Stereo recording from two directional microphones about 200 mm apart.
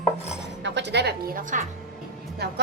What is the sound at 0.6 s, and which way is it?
Speech, 60° right (ahead or behind).